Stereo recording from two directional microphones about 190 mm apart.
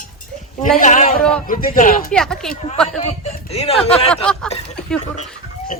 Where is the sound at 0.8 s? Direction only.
45° left (ahead or behind).